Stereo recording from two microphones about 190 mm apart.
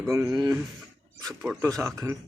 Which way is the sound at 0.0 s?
15° right (ahead or behind).